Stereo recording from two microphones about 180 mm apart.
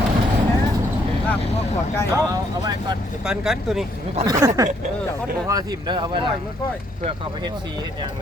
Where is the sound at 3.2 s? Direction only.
5° right (ahead or behind).